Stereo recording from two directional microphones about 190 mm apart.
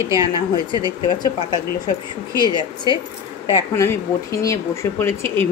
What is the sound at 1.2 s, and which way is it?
Speech, 20° left (ahead or behind).